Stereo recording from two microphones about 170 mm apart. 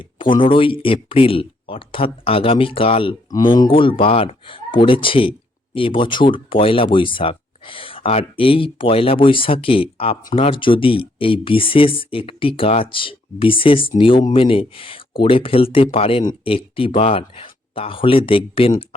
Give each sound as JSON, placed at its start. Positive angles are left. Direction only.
{"t": 0.0, "sound": "speech", "side_deg": 30}